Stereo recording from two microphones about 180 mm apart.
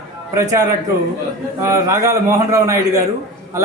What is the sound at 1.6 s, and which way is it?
A man's voice, 15° right (ahead or behind).